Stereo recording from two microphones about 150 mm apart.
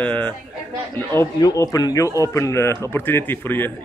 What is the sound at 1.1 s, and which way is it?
Speech, 20° left (ahead or behind).